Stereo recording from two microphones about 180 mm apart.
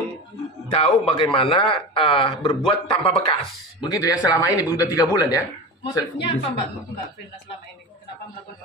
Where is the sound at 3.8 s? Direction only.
20° left (ahead or behind).